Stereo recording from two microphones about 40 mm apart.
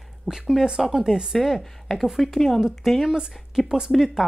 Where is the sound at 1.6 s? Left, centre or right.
Centre.